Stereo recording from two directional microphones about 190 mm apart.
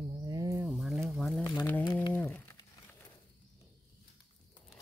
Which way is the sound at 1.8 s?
25° left (ahead or behind).